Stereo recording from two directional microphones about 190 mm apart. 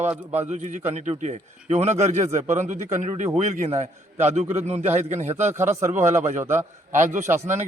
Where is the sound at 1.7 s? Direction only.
35° right (ahead or behind).